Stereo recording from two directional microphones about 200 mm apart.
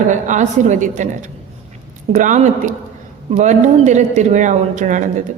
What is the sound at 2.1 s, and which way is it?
A woman's voice, 40° right (ahead or behind).